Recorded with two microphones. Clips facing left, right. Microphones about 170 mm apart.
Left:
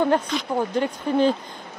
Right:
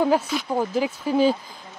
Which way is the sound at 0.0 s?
5° right (ahead or behind).